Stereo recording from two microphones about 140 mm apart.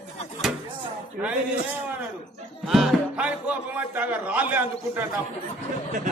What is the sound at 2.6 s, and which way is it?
Speech, centre (ahead or behind).